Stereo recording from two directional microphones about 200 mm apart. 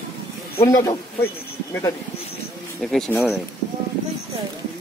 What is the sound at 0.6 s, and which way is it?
Speech, 20° left (ahead or behind).